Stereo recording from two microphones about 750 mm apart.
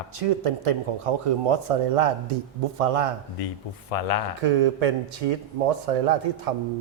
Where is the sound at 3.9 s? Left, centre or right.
Left.